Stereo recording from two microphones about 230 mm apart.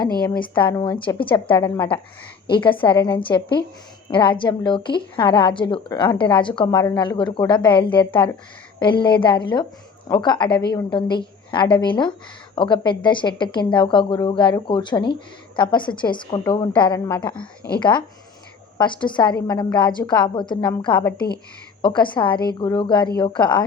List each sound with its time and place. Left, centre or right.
0.4 s a woman's voice: left
19.0 s a woman's voice: centre
21.8 s a woman's voice: centre